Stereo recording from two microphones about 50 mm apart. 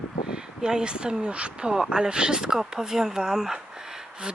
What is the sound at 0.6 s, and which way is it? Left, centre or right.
Speech, centre.